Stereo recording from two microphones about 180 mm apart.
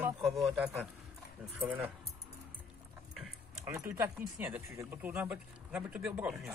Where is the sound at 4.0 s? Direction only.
10° right (ahead or behind).